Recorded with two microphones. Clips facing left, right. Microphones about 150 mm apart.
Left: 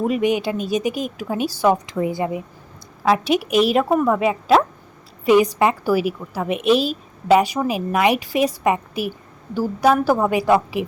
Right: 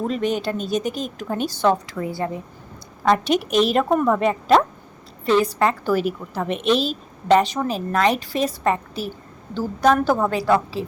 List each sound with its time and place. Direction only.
0.0 s a woman's voice: 10° left (ahead or behind)
1.9 s a woman's voice: 20° left (ahead or behind)
3.0 s a woman's voice: 5° left (ahead or behind)